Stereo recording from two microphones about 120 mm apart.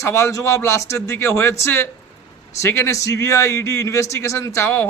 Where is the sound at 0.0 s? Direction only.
25° left (ahead or behind).